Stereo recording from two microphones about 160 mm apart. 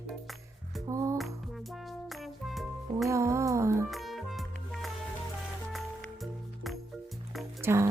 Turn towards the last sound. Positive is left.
turn(degrees=-15)  # may be behind; listen again after turning